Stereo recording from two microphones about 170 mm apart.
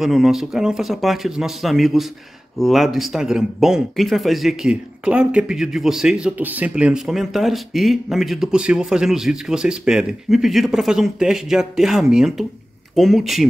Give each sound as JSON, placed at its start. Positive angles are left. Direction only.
{"t": 0.0, "sound": "speech", "side_deg": 0}